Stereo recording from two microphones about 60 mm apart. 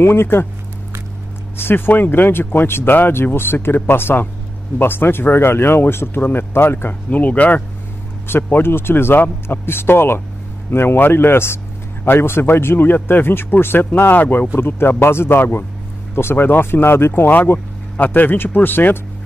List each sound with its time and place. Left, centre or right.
0.0 s speech: left
1.6 s speech: left
7.1 s speech: left